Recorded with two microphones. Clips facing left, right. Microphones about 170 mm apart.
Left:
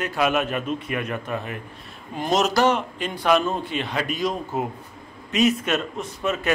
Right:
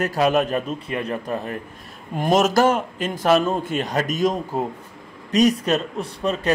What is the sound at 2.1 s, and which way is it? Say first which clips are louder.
A man's voice: right 3 dB; 50° right (ahead or behind).